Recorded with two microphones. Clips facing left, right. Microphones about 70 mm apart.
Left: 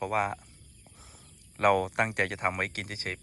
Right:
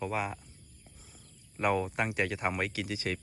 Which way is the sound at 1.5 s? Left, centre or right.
Left.